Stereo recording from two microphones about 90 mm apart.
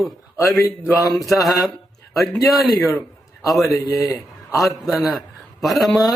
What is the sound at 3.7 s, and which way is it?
Speech, 40° left (ahead or behind).